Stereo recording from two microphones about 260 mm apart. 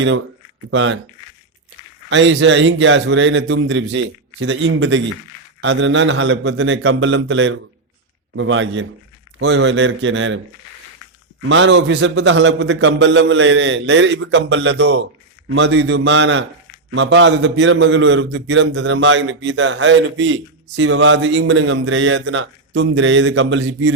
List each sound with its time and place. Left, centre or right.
0.7 s a man's voice: right
2.0 s a man's voice: right
11.4 s a man's voice: right